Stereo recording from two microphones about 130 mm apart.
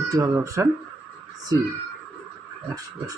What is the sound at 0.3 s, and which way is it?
Speech, 25° right (ahead or behind).